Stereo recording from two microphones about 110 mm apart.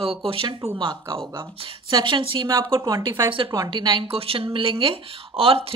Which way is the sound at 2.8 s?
30° right (ahead or behind).